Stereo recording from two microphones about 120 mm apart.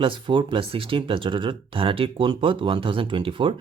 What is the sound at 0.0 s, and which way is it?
Speech, 40° right (ahead or behind).